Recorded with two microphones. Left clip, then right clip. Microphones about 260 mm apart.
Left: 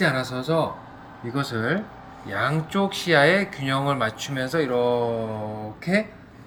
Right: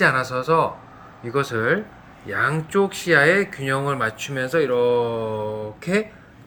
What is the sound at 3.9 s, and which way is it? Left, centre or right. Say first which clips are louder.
Speech: right 1 dB; centre.